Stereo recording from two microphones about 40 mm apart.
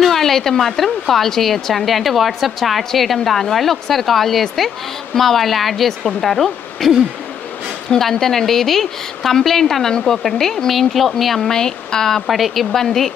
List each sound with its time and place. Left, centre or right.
0.0 s a woman's voice: centre
8.0 s a woman's voice: centre
11.5 s a woman's voice: centre
12.3 s a woman's voice: centre
12.7 s a woman's voice: centre